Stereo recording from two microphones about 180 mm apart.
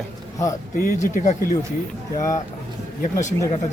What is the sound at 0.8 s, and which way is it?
Speech, 50° left (ahead or behind).